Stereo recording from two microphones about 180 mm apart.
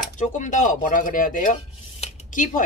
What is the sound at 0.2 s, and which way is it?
Speech, 45° left (ahead or behind).